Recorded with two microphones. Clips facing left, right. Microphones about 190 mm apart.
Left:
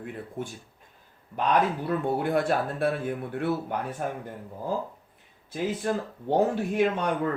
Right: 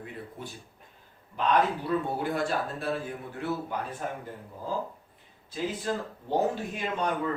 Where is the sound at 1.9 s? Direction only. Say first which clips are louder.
Left 3 dB; 55° left (ahead or behind).